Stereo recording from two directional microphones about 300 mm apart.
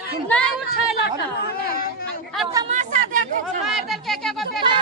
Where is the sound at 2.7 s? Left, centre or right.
Right.